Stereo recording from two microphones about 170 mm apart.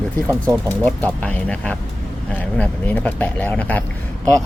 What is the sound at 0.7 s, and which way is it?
Speech, 10° left (ahead or behind).